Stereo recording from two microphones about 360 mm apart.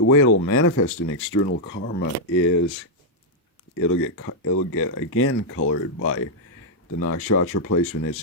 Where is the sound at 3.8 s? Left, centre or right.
Left.